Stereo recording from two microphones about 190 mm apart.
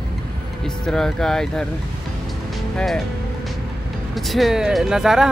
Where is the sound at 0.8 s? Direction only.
5° left (ahead or behind).